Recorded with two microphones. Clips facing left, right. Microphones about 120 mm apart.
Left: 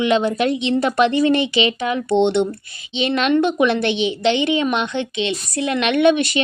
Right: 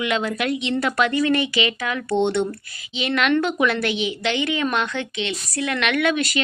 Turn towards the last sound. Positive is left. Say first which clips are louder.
# left 6 dB
turn(degrees=25)  # may be behind; listen again after turning